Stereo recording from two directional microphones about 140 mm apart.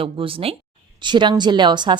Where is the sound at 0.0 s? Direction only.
40° right (ahead or behind).